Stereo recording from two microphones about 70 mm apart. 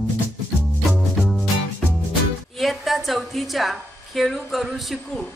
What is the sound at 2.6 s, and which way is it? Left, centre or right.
A woman's voice, centre.